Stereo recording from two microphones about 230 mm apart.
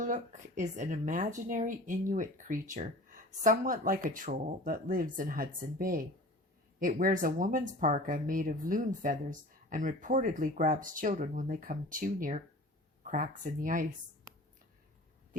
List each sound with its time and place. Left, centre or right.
0.0 s speech: right